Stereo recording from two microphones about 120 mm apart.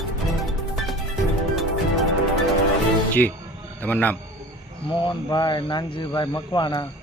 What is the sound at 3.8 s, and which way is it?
Speech, 15° left (ahead or behind).